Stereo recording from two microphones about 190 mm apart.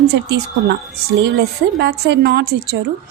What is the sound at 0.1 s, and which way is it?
Speech, 60° right (ahead or behind).